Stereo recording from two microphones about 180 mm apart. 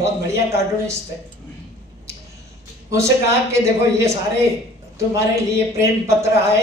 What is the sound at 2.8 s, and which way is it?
A man's voice, 15° right (ahead or behind).